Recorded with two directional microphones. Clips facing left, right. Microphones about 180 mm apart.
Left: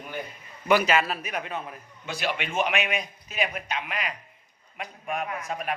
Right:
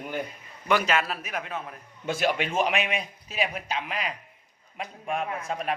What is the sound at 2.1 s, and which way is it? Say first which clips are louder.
A man's voice: right 4 dB; 45° right (ahead or behind).